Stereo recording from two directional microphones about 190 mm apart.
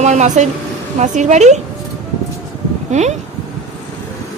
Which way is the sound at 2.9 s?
35° right (ahead or behind).